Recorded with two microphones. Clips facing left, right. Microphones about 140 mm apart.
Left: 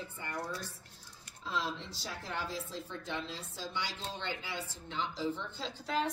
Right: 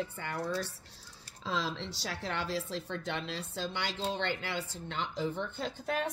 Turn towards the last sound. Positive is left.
turn(degrees=-55)  # may be behind; listen again after turning